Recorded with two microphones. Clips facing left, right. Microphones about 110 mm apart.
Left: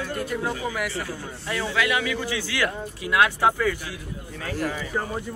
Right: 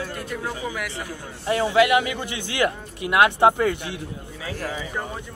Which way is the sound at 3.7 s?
25° right (ahead or behind).